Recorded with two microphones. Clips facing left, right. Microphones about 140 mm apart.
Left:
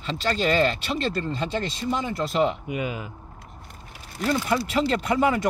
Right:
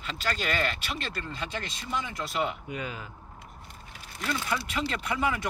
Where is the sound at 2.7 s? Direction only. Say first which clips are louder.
Left 7 dB; 15° left (ahead or behind).